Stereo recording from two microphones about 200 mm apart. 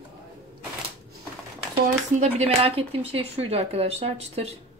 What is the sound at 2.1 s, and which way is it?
Speech, 30° right (ahead or behind).